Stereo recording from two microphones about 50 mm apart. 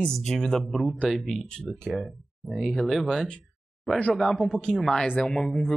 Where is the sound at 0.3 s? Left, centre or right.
Centre.